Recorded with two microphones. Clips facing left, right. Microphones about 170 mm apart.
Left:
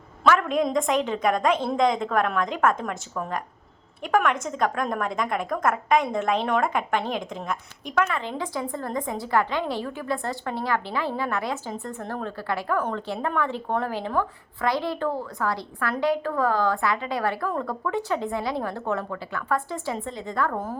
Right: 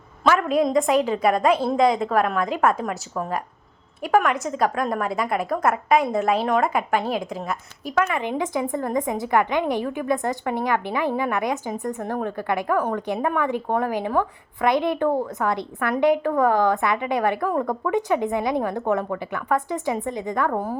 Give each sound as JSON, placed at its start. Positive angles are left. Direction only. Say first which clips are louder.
{"t": 0.3, "sound": "a woman's voice", "louder": "right 2 dB", "side_deg": -5}
{"t": 8.1, "sound": "a woman's voice", "louder": "right 5 dB", "side_deg": -15}